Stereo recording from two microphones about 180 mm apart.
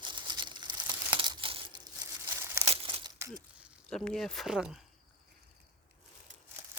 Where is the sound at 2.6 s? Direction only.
30° right (ahead or behind).